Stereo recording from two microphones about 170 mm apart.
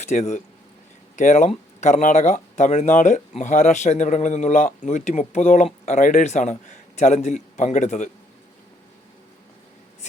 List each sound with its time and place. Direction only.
0.0 s speech: 40° left (ahead or behind)